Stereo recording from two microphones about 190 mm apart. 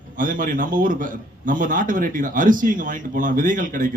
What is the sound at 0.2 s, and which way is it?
A man's voice, 45° right (ahead or behind).